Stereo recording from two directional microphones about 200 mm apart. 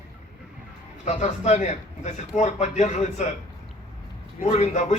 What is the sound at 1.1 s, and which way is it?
A man's voice, 35° left (ahead or behind).